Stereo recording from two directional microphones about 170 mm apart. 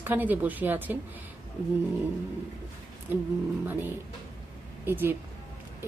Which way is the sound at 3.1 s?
10° right (ahead or behind).